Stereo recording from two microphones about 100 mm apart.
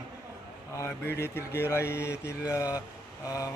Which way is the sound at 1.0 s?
25° left (ahead or behind).